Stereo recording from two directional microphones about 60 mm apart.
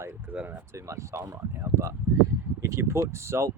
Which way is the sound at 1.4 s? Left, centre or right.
Right.